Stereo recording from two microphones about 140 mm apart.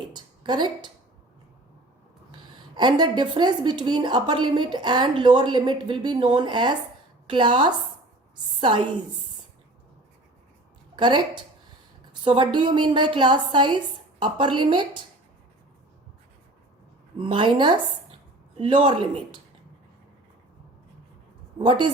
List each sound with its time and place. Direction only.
0.1 s a sound: 30° right (ahead or behind)
2.7 s a woman's voice: 30° right (ahead or behind)
10.9 s a woman's voice: 30° right (ahead or behind)
12.2 s a woman's voice: 35° right (ahead or behind)
17.2 s a woman's voice: 35° right (ahead or behind)
21.6 s a woman's voice: 35° right (ahead or behind)